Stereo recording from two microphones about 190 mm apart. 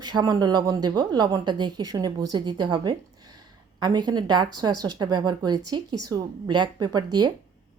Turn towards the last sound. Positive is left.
turn(degrees=-25)  # may be behind; listen again after turning